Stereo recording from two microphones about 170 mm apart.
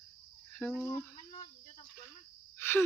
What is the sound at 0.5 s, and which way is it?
Speech, 10° left (ahead or behind).